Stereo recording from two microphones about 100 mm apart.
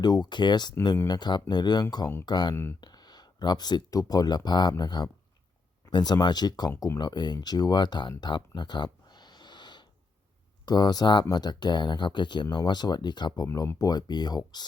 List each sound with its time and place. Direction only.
0.0 s speech: 45° left (ahead or behind)
7.0 s speech: 45° left (ahead or behind)
8.2 s a sound: 45° left (ahead or behind)
10.7 s speech: 45° left (ahead or behind)
13.5 s speech: 35° left (ahead or behind)